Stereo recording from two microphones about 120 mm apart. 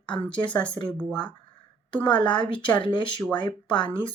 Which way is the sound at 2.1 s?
40° left (ahead or behind).